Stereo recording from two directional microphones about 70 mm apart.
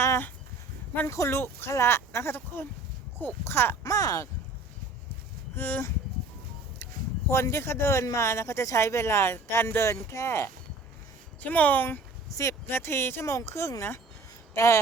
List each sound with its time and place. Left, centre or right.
1.0 s speech: left
3.8 s speech: left
5.5 s speech: left
7.3 s speech: left
11.3 s speech: left
12.3 s speech: left
12.6 s speech: left